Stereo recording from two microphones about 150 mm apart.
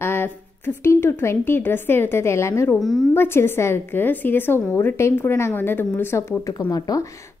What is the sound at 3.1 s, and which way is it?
A woman's voice, 15° left (ahead or behind).